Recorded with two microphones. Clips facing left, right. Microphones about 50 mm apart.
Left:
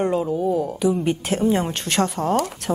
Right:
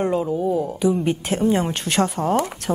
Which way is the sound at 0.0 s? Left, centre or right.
Centre.